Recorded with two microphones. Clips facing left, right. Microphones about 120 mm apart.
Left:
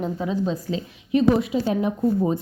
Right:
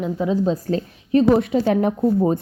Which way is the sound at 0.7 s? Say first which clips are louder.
Right 4 dB; 55° right (ahead or behind).